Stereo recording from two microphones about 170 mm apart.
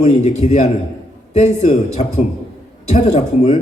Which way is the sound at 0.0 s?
40° left (ahead or behind).